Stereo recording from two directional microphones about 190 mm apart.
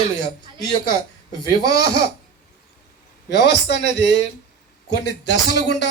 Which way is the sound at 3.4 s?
65° left (ahead or behind).